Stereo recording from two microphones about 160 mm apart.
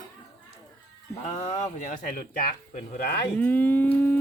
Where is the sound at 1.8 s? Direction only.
60° left (ahead or behind).